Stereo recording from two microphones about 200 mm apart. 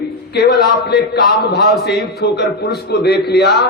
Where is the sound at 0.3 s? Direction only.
55° left (ahead or behind).